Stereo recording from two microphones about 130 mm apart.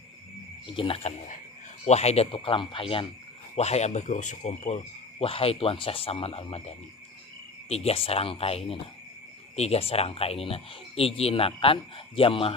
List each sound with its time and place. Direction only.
0.8 s speech: 45° left (ahead or behind)
1.8 s speech: 55° left (ahead or behind)
3.5 s speech: 55° left (ahead or behind)
5.2 s speech: 45° left (ahead or behind)